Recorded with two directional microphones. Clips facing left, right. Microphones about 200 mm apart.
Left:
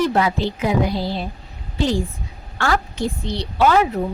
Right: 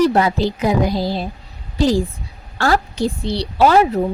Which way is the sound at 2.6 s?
35° right (ahead or behind).